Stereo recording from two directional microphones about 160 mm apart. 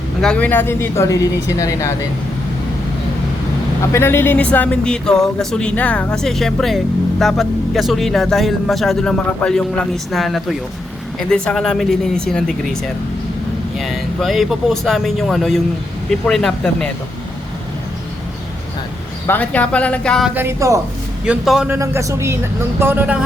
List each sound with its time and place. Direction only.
0.2 s speech: 5° left (ahead or behind)
3.9 s speech: 15° left (ahead or behind)
13.7 s speech: centre (ahead or behind)
19.3 s speech: 10° left (ahead or behind)
20.3 s speech: 15° right (ahead or behind)
21.2 s speech: 5° right (ahead or behind)
21.7 s speech: 15° right (ahead or behind)